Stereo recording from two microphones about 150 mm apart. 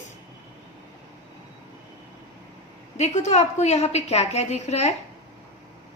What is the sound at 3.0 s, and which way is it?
A woman's voice, 50° left (ahead or behind).